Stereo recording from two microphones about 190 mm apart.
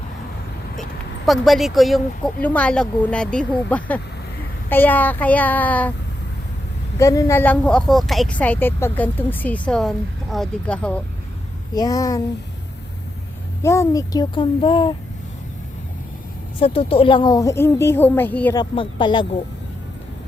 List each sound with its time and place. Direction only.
1.3 s speech: centre (ahead or behind)
7.0 s speech: 15° left (ahead or behind)
11.7 s a child's voice: 20° left (ahead or behind)
13.6 s a child's voice: 15° left (ahead or behind)
16.6 s speech: 30° left (ahead or behind); by 18.5 s 10° left (ahead or behind)
18.5 s a child's voice: 25° left (ahead or behind)